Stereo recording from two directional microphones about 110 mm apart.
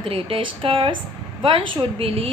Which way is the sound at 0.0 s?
55° right (ahead or behind).